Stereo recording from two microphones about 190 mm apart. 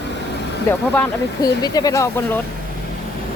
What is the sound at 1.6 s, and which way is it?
Speech, 20° left (ahead or behind).